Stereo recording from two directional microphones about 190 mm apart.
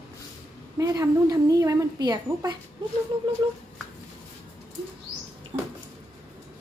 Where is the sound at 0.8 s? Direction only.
15° right (ahead or behind).